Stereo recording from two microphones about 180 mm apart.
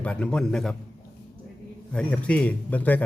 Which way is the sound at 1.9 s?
5° left (ahead or behind).